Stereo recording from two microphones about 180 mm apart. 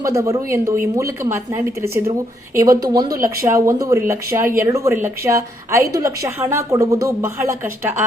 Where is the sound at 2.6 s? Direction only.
20° right (ahead or behind).